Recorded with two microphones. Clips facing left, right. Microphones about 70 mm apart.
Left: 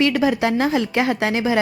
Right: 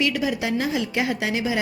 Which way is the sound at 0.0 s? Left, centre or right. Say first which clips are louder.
Left 6 dB; left.